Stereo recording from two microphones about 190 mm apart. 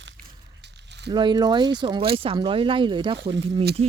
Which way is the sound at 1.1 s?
25° right (ahead or behind).